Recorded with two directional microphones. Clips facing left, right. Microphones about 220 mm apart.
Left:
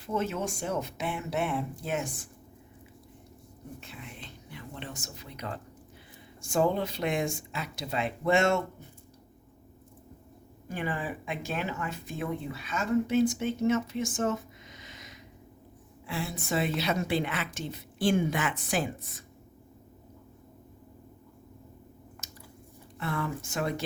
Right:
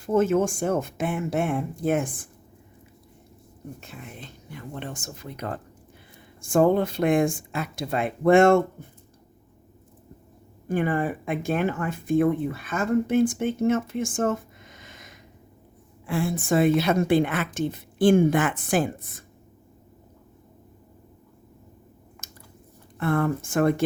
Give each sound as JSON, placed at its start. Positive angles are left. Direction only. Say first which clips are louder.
{"t": 0.0, "sound": "speech", "louder": "right 10 dB", "side_deg": -50}
{"t": 3.8, "sound": "speech", "louder": "right 4 dB", "side_deg": -45}
{"t": 10.7, "sound": "speech", "louder": "right 9 dB", "side_deg": -50}
{"t": 22.2, "sound": "a sound", "louder": "even", "side_deg": -50}
{"t": 23.0, "sound": "speech", "louder": "right 9 dB", "side_deg": -50}